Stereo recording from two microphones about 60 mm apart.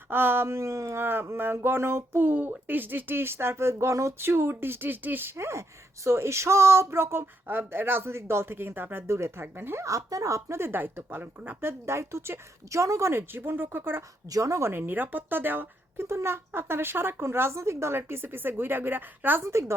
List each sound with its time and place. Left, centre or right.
0.1 s speech: right
1.0 s speech: right
4.3 s speech: right
9.8 s speech: right
10.7 s speech: right
11.6 s speech: right
12.8 s speech: right
14.3 s speech: right
14.7 s speech: right
16.0 s speech: right
19.4 s speech: right